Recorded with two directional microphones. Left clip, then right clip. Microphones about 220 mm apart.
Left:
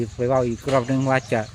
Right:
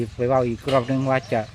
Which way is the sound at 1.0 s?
15° left (ahead or behind).